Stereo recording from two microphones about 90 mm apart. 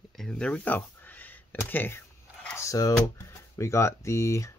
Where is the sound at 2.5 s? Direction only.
35° left (ahead or behind).